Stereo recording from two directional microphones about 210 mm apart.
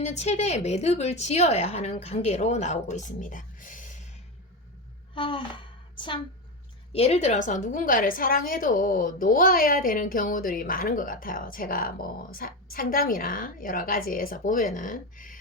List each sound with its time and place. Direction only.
0.0 s a woman's voice: 30° left (ahead or behind)
5.1 s speech: 25° left (ahead or behind)
6.9 s a woman's voice: 30° left (ahead or behind)